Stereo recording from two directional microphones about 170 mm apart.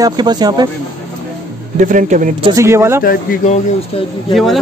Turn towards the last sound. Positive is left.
turn(degrees=0)  # may be behind; listen again after turning